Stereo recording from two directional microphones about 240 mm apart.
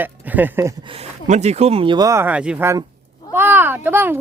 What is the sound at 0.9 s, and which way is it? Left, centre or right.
Speech, right.